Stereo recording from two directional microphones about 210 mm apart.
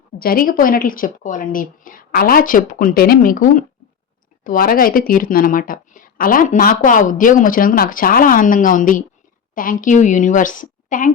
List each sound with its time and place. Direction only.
0.2 s speech: 45° left (ahead or behind)